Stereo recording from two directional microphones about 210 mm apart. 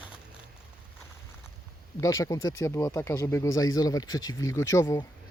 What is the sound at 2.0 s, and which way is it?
Speech, 15° left (ahead or behind).